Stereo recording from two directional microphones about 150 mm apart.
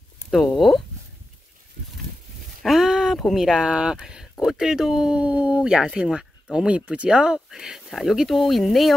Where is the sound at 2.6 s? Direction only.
Centre (ahead or behind).